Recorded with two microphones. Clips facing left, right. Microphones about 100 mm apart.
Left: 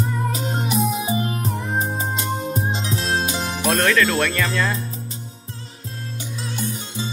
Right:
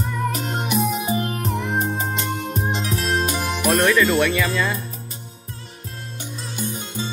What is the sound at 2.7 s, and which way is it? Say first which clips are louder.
Music: even; 25° left (ahead or behind).